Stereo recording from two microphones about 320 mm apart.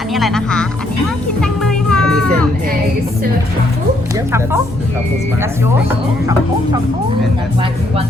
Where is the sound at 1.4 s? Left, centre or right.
Centre.